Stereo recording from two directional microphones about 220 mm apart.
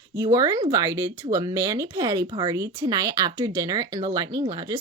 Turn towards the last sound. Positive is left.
turn(degrees=-15)  # may be behind; listen again after turning